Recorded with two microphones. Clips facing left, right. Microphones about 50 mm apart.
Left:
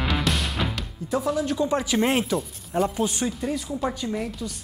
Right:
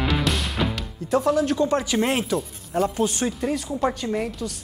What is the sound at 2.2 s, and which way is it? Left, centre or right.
Speech, centre.